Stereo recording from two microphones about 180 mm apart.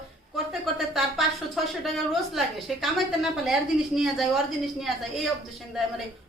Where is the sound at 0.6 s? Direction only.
Centre (ahead or behind).